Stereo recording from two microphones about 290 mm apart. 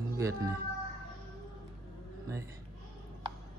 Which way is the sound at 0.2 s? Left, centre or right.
Centre.